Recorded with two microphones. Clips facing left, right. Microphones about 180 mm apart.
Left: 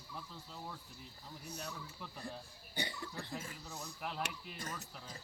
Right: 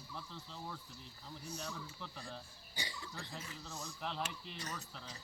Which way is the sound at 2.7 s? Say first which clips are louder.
Left 5 dB; 60° left (ahead or behind).